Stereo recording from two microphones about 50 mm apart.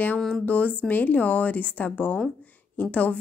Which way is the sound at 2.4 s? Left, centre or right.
Left.